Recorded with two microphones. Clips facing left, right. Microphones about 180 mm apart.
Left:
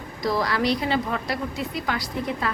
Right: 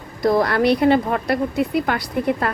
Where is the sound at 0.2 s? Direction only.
55° right (ahead or behind).